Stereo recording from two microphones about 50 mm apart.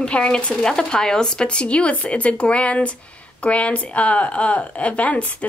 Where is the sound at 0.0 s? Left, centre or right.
Centre.